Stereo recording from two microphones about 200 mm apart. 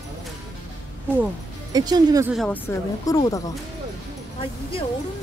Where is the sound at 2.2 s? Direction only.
Centre (ahead or behind); by 3.4 s 15° left (ahead or behind).